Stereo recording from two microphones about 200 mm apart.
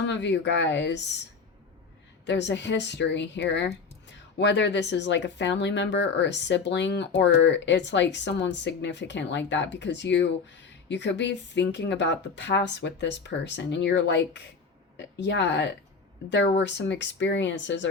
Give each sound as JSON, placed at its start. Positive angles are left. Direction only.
{"t": 0.0, "sound": "speech", "side_deg": 60}